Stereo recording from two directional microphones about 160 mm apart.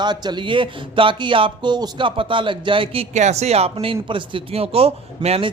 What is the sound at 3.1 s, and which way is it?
A man's voice, 45° right (ahead or behind).